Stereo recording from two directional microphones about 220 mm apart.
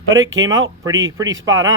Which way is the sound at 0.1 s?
60° right (ahead or behind).